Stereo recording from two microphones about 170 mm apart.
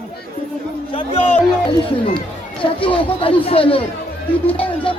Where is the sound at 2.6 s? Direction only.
30° left (ahead or behind).